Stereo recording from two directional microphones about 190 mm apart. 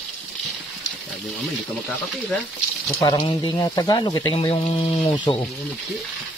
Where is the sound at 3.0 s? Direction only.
25° left (ahead or behind).